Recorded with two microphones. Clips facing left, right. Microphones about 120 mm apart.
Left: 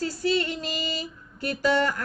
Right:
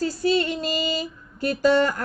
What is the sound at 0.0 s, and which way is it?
Female singing, 25° right (ahead or behind).